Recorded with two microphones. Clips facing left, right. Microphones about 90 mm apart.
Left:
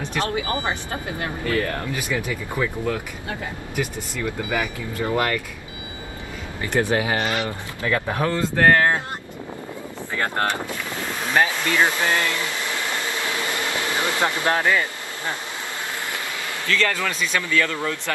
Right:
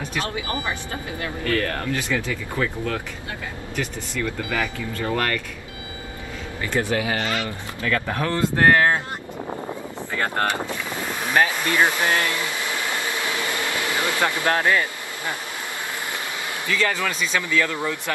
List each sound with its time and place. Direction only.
1.4 s speech: 15° left (ahead or behind)
6.6 s speech: 25° left (ahead or behind)
8.4 s speech: 10° right (ahead or behind)
10.6 s speech: 15° right (ahead or behind)
11.5 s air conditioning: 15° right (ahead or behind)
13.5 s air conditioning: 20° left (ahead or behind)
14.7 s speech: 20° left (ahead or behind)
16.6 s speech: 15° right (ahead or behind)